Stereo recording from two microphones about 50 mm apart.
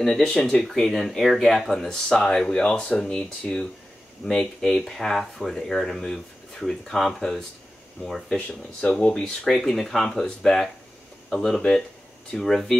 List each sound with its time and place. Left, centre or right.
0.2 s speech: centre
4.3 s speech: centre
8.4 s speech: left
9.0 s speech: centre